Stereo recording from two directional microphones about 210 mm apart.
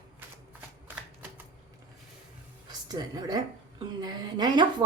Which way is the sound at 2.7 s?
20° right (ahead or behind).